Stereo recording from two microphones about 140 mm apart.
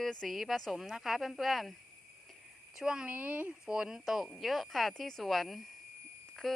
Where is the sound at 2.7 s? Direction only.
5° right (ahead or behind).